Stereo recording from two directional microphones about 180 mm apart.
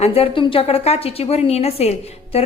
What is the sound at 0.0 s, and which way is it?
A woman's voice, 30° left (ahead or behind).